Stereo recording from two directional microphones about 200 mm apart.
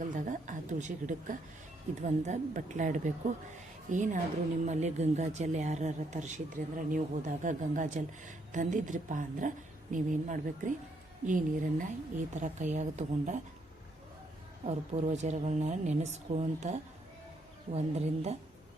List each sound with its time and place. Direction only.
0.0 s a sound: 40° right (ahead or behind)
2.0 s speech: 35° right (ahead or behind)
14.6 s speech: 30° right (ahead or behind)
17.7 s speech: 35° right (ahead or behind)